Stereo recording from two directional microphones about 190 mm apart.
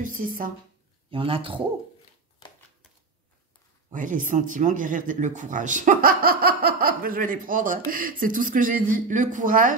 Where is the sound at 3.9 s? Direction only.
45° right (ahead or behind).